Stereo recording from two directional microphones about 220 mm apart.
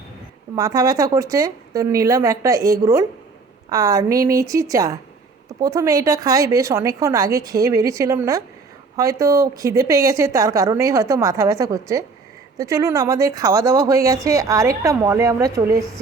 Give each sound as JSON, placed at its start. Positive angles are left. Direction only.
{"t": 0.5, "sound": "a woman's voice", "side_deg": -15}